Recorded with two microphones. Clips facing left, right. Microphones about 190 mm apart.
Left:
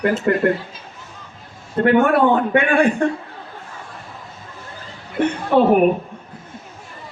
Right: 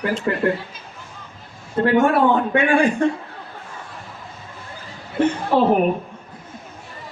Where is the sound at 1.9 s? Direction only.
60° left (ahead or behind).